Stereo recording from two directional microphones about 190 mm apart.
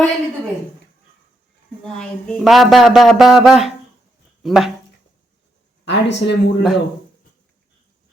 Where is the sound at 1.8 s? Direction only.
5° left (ahead or behind).